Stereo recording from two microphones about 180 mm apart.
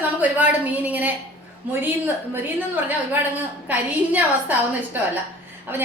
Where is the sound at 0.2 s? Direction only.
10° right (ahead or behind).